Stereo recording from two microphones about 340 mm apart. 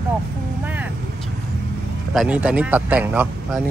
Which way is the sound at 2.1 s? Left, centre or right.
Centre.